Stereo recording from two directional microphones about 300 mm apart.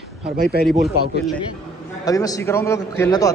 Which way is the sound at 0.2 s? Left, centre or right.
Right.